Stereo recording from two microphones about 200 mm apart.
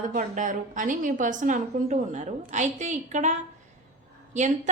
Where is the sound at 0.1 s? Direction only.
40° right (ahead or behind).